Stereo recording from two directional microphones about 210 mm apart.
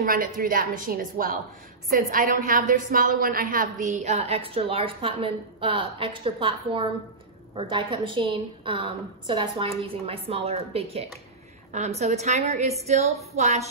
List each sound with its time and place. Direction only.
0.0 s a woman's voice: 45° right (ahead or behind)